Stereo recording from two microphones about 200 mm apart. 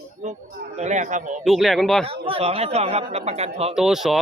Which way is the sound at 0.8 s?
35° right (ahead or behind).